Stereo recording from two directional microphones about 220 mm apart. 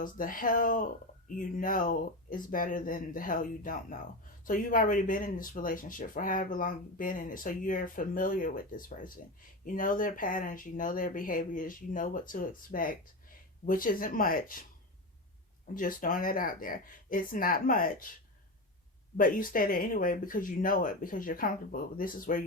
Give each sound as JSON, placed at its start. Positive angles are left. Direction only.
{"t": 0.0, "sound": "speech", "side_deg": 40}
{"t": 15.7, "sound": "speech", "side_deg": 40}
{"t": 19.1, "sound": "speech", "side_deg": 40}